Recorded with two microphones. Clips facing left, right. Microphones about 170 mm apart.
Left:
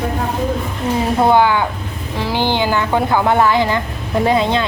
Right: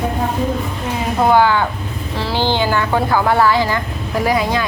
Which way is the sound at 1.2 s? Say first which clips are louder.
Right 1 dB; 20° left (ahead or behind).